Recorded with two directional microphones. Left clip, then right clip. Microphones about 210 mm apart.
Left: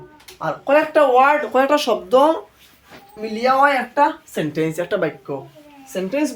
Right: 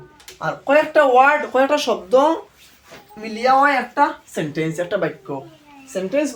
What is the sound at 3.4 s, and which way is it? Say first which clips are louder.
Speech: even; 15° left (ahead or behind).